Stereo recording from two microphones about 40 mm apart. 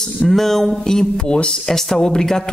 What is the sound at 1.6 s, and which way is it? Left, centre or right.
Speech, centre.